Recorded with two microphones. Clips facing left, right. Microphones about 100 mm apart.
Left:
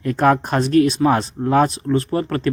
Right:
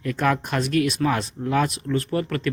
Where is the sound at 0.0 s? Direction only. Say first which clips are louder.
Left 6 dB; 35° left (ahead or behind).